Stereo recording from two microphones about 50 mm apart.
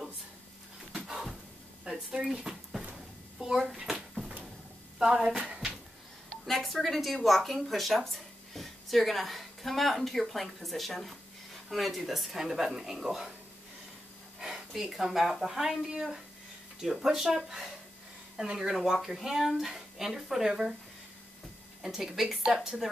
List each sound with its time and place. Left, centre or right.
1.0 s music: centre
1.9 s speech: right
2.2 s a child's voice: centre
4.9 s speech: centre
6.4 s a woman's voice: centre
14.4 s speech: centre
21.8 s speech: centre